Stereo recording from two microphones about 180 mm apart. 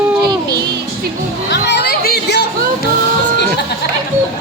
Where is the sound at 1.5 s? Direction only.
70° left (ahead or behind).